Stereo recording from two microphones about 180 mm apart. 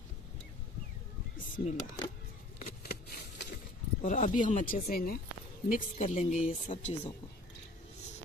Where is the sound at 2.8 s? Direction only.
60° left (ahead or behind).